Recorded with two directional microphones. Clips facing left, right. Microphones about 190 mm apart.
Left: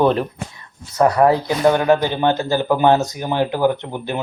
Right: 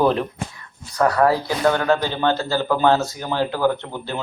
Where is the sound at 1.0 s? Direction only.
20° left (ahead or behind).